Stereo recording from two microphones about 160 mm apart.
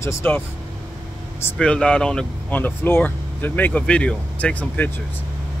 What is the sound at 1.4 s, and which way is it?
Speech, 5° left (ahead or behind).